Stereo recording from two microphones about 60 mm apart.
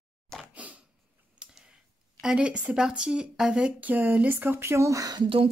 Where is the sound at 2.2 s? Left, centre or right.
Centre.